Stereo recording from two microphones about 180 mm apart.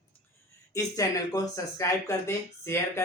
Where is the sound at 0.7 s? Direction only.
20° left (ahead or behind).